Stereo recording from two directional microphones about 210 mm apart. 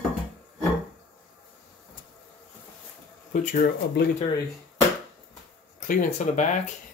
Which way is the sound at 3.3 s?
40° left (ahead or behind).